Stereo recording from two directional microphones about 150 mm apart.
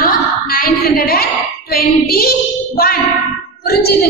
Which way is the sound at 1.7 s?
90° left.